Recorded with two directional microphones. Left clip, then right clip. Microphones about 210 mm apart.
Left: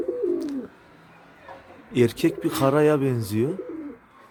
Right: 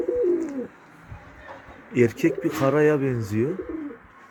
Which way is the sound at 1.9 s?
20° left (ahead or behind).